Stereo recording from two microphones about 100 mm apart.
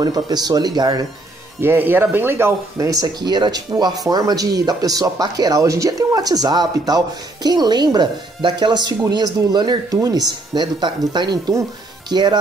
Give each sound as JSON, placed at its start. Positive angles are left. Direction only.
{"t": 0.0, "sound": "a woman's voice", "side_deg": -40}
{"t": 1.6, "sound": "speech", "side_deg": -20}
{"t": 2.9, "sound": "a woman's voice", "side_deg": -40}
{"t": 9.9, "sound": "speech", "side_deg": -35}
{"t": 10.5, "sound": "a woman's voice", "side_deg": -45}